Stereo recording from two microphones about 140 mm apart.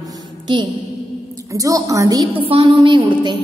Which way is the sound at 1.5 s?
25° right (ahead or behind).